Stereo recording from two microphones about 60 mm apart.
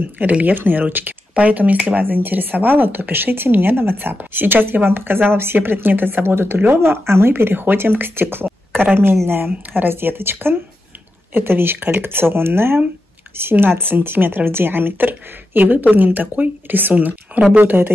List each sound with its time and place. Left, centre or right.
0.2 s speech: right